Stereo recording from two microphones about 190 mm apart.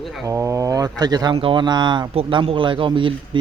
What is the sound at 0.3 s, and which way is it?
Speech, 15° right (ahead or behind).